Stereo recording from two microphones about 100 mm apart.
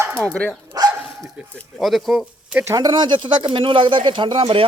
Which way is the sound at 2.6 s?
35° right (ahead or behind).